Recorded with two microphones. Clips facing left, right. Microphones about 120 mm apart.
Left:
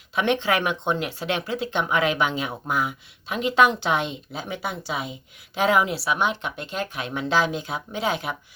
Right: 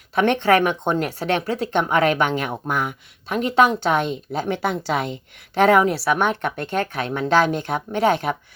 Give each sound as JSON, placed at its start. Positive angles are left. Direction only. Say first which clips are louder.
{"t": 0.1, "sound": "speech", "louder": "right 5 dB", "side_deg": -55}